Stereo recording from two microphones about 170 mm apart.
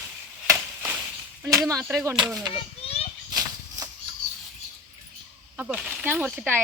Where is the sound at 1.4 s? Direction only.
20° right (ahead or behind).